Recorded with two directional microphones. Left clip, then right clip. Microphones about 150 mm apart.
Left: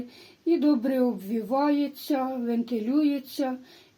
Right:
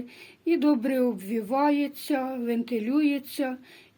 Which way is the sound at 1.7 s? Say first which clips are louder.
Even; 15° left (ahead or behind).